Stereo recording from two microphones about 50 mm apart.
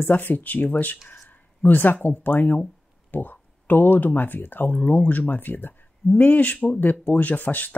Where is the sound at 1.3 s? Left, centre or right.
Left.